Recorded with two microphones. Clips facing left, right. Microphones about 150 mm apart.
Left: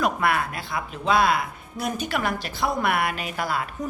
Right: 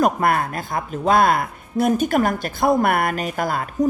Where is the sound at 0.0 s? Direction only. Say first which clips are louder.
Right 5 dB; 45° right (ahead or behind).